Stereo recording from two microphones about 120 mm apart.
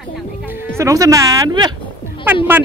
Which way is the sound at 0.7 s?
25° right (ahead or behind).